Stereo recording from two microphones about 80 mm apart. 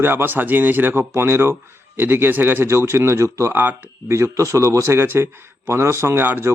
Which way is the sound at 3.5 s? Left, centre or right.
Right.